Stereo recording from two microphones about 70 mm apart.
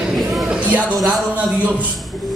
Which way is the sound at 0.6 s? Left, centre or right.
Right.